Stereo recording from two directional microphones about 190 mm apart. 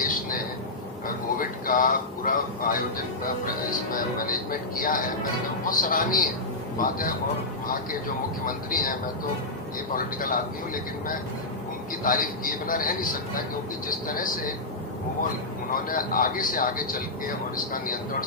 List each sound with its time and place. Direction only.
1.0 s a sound: 45° left (ahead or behind)
3.4 s a man's voice: 45° left (ahead or behind)
8.4 s a man's voice: 45° left (ahead or behind)
9.9 s a man's voice: 45° left (ahead or behind)
12.0 s a man's voice: 45° left (ahead or behind)
15.7 s a man's voice: 45° left (ahead or behind)